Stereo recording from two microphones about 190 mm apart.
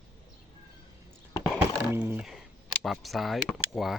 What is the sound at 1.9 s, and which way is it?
Speech, 10° right (ahead or behind).